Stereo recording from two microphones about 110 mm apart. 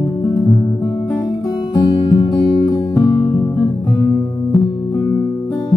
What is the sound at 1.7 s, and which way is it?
Music, 30° left (ahead or behind).